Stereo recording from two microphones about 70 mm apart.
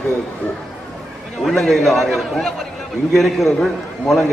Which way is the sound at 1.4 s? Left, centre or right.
Centre.